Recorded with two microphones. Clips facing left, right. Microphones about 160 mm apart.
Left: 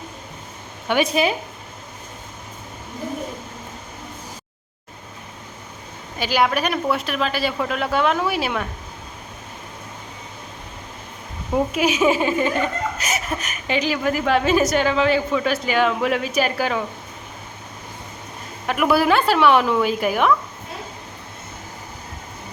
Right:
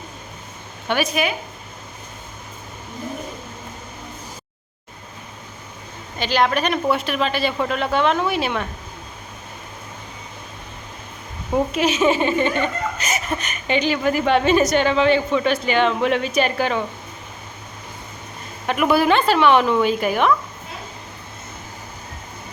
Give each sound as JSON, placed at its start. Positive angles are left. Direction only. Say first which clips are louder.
{"t": 1.0, "sound": "speech", "louder": "left 3 dB", "side_deg": 30}
{"t": 6.1, "sound": "a woman's voice", "louder": "right 1 dB", "side_deg": 10}
{"t": 11.5, "sound": "speech", "louder": "even", "side_deg": 10}
{"t": 18.6, "sound": "speech", "louder": "right 1 dB", "side_deg": 0}